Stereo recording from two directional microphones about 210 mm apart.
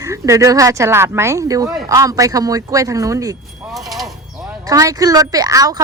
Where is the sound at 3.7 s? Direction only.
Centre (ahead or behind).